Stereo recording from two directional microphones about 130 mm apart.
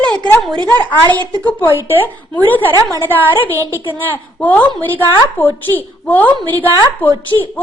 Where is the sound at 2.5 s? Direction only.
15° left (ahead or behind).